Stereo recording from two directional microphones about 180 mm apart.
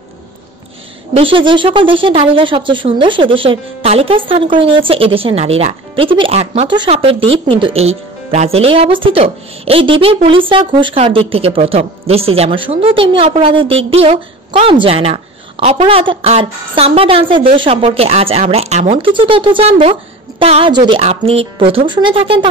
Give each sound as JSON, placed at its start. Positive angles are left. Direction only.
{"t": 1.1, "sound": "a woman's voice", "side_deg": -30}